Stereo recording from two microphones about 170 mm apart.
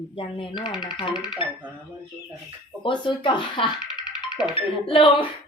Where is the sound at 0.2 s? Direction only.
30° left (ahead or behind).